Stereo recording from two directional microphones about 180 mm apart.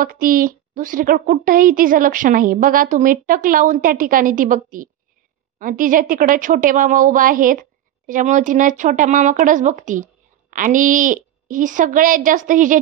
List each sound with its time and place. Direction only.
0.0 s a woman's voice: 50° right (ahead or behind)